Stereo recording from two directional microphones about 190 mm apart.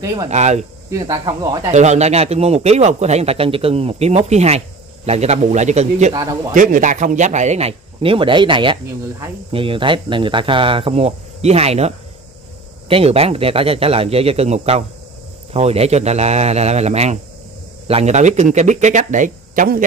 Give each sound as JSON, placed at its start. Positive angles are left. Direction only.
{"t": 0.0, "sound": "speech", "side_deg": -20}
{"t": 0.3, "sound": "speech", "side_deg": -35}
{"t": 0.8, "sound": "speech", "side_deg": -20}
{"t": 1.7, "sound": "speech", "side_deg": -35}